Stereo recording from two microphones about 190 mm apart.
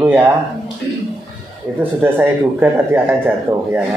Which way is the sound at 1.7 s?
10° right (ahead or behind).